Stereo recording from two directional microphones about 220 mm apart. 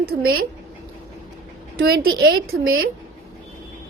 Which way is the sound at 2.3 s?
65° right (ahead or behind).